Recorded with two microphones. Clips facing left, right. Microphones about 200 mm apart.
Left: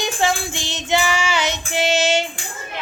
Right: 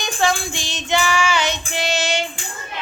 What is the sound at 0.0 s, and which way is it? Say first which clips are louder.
Child singing: even; 20° left (ahead or behind).